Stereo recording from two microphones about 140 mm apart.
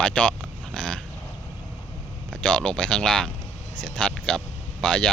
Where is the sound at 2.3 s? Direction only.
5° left (ahead or behind).